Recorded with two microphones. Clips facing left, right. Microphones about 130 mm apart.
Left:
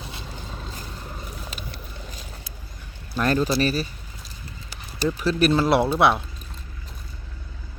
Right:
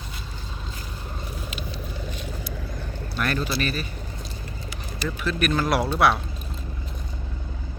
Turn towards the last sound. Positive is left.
turn(degrees=25)  # may be behind; listen again after turning